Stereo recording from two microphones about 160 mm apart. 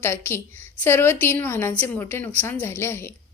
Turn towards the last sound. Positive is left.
turn(degrees=15)  # may be behind; listen again after turning